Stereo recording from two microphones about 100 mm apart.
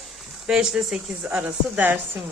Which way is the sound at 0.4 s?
5° right (ahead or behind).